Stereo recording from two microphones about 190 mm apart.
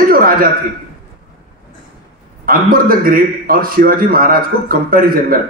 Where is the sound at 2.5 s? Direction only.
50° right (ahead or behind).